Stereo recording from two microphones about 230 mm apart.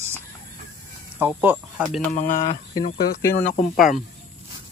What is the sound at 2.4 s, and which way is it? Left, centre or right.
Speech, left.